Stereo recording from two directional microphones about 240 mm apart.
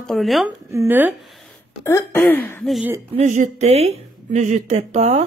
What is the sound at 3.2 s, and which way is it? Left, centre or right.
Speech, right.